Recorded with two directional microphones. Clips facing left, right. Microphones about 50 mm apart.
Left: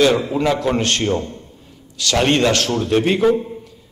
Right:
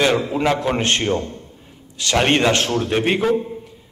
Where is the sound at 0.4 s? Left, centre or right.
Right.